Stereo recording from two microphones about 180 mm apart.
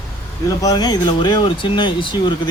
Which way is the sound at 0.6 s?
20° left (ahead or behind).